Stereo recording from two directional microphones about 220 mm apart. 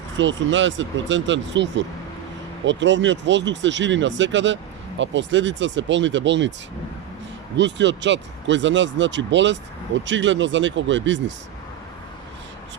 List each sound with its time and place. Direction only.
0.2 s speech: 60° right (ahead or behind)
7.5 s speech: 55° right (ahead or behind)